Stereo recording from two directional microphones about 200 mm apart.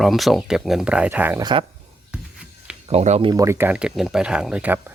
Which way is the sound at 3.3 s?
15° right (ahead or behind).